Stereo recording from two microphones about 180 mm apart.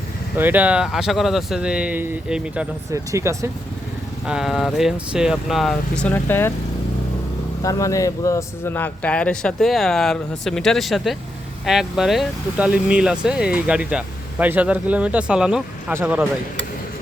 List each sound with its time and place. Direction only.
0.3 s a man's voice: 10° right (ahead or behind)
4.3 s a man's voice: centre (ahead or behind)
7.6 s a man's voice: 20° left (ahead or behind); by 16.3 s 10° right (ahead or behind)